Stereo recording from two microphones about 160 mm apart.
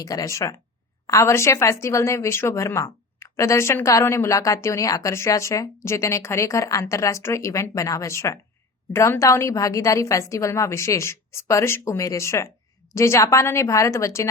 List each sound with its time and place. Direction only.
0.0 s a woman's voice: 20° left (ahead or behind)